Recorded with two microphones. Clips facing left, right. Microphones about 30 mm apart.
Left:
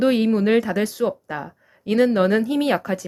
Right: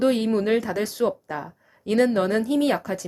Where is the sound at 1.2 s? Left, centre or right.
Centre.